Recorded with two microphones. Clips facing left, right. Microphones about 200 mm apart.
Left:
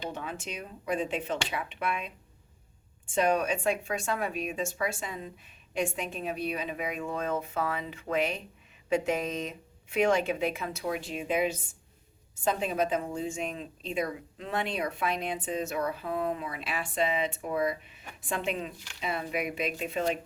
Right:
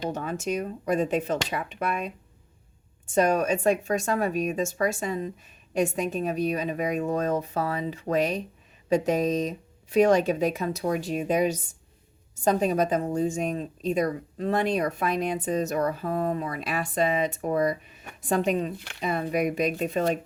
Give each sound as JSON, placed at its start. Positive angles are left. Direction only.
{"t": 0.0, "sound": "speech", "side_deg": -45}
{"t": 18.8, "sound": "speech", "side_deg": -55}